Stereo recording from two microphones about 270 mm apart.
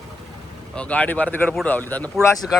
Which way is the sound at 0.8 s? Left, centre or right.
Centre.